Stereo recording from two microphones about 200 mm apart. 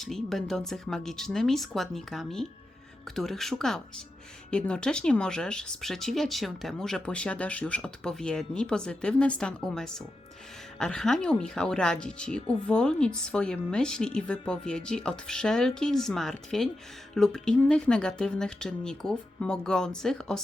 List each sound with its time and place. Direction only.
0.0 s speech: centre (ahead or behind)